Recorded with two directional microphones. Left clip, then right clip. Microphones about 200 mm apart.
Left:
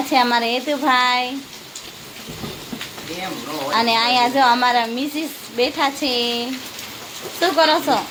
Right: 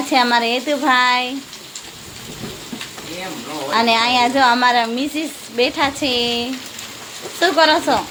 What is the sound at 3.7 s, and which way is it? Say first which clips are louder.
A woman's voice: right 2 dB; 15° right (ahead or behind).